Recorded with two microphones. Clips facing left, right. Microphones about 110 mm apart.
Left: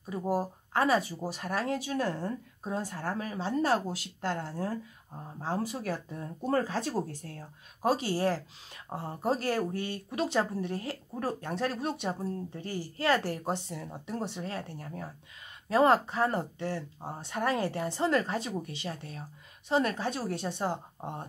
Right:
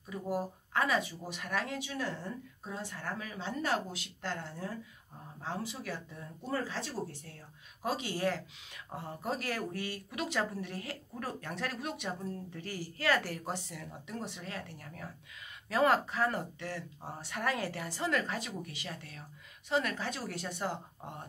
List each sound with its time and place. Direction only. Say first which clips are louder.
0.1 s a woman's voice: left 5 dB; 35° left (ahead or behind)